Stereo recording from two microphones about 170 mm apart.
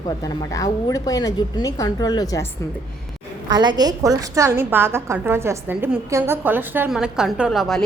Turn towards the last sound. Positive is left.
turn(degrees=0)  # may be behind; listen again after turning